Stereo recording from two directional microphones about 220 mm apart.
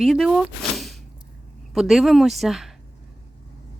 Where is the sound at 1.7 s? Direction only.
Centre (ahead or behind).